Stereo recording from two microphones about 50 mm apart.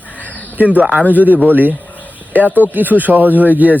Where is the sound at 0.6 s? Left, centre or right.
Right.